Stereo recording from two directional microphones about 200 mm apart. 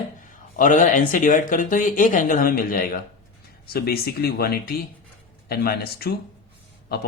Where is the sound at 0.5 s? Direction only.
40° left (ahead or behind).